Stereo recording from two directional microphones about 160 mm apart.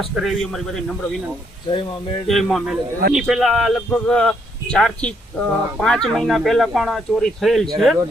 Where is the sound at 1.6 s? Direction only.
30° left (ahead or behind).